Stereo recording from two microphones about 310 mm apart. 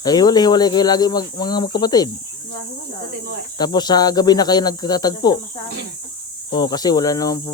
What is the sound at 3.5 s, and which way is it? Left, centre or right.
Speech, centre.